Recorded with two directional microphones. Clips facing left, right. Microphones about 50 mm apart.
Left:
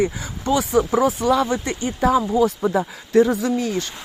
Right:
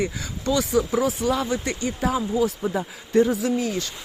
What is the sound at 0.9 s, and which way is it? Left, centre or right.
Speech, left.